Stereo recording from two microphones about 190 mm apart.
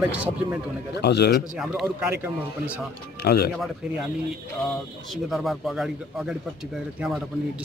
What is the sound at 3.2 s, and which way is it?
Speech, 55° left (ahead or behind).